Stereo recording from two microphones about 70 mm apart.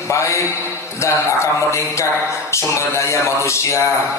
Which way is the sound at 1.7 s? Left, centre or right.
Left.